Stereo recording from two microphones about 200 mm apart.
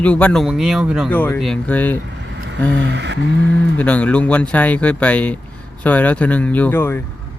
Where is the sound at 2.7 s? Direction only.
60° right (ahead or behind).